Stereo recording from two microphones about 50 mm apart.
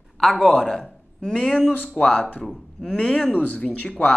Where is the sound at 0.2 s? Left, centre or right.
Centre.